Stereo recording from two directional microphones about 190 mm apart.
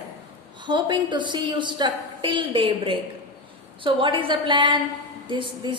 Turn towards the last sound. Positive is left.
turn(degrees=-25)  # may be behind; listen again after turning